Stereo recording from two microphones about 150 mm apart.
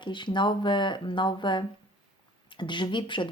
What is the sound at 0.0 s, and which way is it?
Speech, 30° left (ahead or behind).